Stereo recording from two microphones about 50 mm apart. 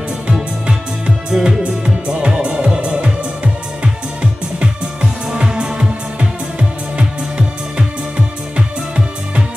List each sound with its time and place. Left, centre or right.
0.7 s music: centre